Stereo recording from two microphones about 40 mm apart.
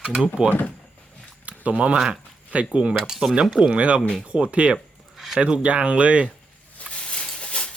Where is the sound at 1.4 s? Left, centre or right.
Right.